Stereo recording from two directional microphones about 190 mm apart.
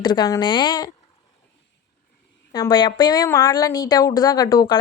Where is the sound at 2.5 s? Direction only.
20° left (ahead or behind).